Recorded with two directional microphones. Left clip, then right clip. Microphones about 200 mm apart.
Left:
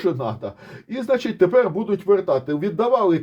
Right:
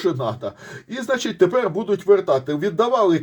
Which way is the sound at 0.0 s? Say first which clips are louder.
Right 1 dB; 20° left (ahead or behind).